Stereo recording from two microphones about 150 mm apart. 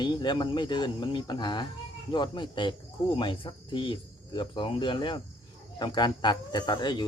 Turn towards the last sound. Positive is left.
turn(degrees=30)  # may be behind; listen again after turning